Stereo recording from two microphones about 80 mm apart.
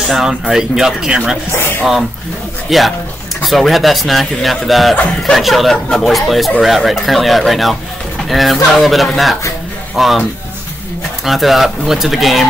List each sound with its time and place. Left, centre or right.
0.0 s speech: centre
1.5 s speech: left
1.8 s speech: centre
11.2 s speech: centre